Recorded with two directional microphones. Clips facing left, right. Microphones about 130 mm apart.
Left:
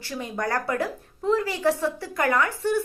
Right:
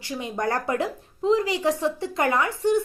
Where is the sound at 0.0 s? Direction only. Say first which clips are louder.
Right 2 dB; 20° right (ahead or behind).